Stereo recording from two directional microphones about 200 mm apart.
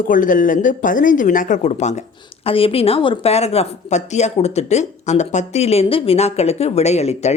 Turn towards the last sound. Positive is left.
turn(degrees=35)  # may be behind; listen again after turning